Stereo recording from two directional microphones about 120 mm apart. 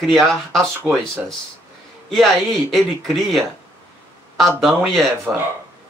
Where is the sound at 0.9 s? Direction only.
15° right (ahead or behind).